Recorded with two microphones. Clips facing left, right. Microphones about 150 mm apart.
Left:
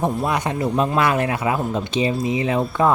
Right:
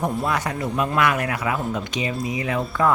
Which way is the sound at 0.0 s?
20° left (ahead or behind).